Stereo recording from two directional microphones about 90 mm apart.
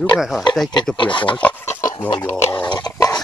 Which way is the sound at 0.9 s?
65° left (ahead or behind).